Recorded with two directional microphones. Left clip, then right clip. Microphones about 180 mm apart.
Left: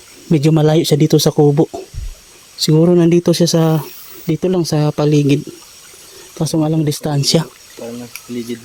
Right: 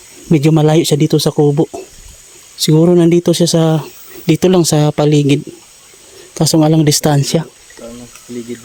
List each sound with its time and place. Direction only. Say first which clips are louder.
0.3 s speech: right 2 dB; 10° right (ahead or behind)
4.3 s speech: right 6 dB; 35° right (ahead or behind)
4.6 s speech: right 4 dB; 20° right (ahead or behind)
6.3 s speech: right 6 dB; 25° right (ahead or behind)
7.2 s speech: left 1 dB; 10° right (ahead or behind)
8.5 s speech: even; 45° left (ahead or behind)